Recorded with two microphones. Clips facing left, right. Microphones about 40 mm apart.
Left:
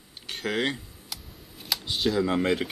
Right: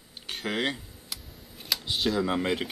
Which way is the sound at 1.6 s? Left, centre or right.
Centre.